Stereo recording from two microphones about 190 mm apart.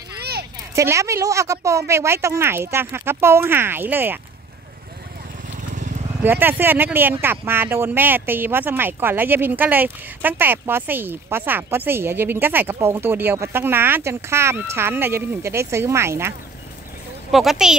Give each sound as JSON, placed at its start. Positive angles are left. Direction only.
{"t": 0.2, "sound": "a sound", "side_deg": -60}
{"t": 0.7, "sound": "speech", "side_deg": -15}
{"t": 6.2, "sound": "speech", "side_deg": -10}
{"t": 17.3, "sound": "speech", "side_deg": 0}